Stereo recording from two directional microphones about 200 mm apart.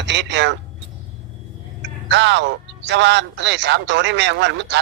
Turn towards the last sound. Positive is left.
turn(degrees=-65)  # may be behind; listen again after turning